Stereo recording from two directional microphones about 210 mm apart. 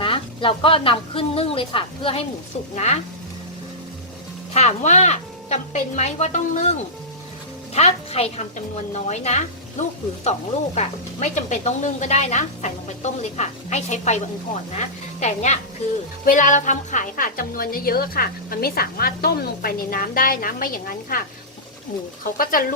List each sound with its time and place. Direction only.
0.0 s a woman's voice: 25° left (ahead or behind)
4.5 s a woman's voice: 35° left (ahead or behind)